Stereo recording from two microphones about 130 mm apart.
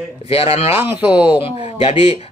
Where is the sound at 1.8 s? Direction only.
50° left (ahead or behind).